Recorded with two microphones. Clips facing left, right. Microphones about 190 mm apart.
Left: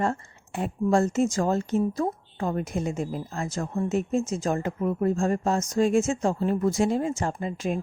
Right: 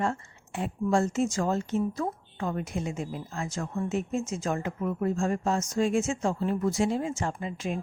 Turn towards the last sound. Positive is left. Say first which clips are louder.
# left 4 dB
turn(degrees=45)  # may be behind; listen again after turning